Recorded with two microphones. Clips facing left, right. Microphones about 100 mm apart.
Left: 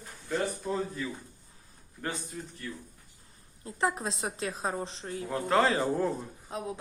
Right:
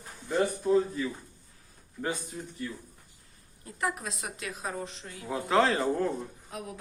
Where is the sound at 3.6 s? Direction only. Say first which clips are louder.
Left 3 dB; 30° left (ahead or behind).